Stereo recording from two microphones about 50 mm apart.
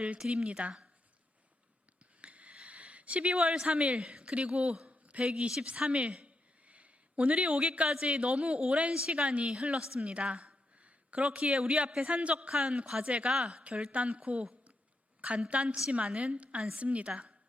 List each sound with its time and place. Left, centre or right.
0.2 s speech: centre
2.2 s a sound: right
3.3 s a woman's voice: centre
5.6 s a sound: right
8.0 s a woman's voice: right
9.6 s a woman's voice: centre
15.4 s a woman's voice: right